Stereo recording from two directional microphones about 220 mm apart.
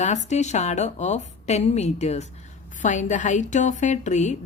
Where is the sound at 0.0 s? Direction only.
30° left (ahead or behind).